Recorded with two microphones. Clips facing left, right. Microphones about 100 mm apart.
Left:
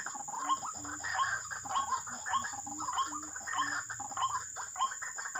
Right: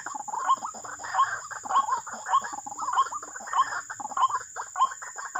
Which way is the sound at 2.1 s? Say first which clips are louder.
Right 9 dB; 45° right (ahead or behind).